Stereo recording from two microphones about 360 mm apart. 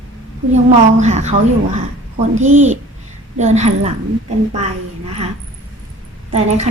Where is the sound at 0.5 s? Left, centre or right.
Centre.